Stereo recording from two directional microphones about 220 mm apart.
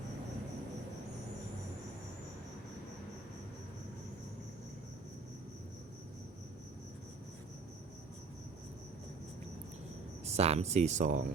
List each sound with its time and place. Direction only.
10.2 s speech: 30° right (ahead or behind)